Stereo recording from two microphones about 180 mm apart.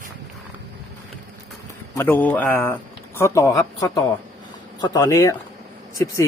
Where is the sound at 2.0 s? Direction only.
10° left (ahead or behind).